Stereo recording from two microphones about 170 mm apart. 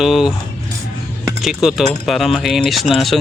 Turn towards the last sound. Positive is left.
turn(degrees=0)  # may be behind; listen again after turning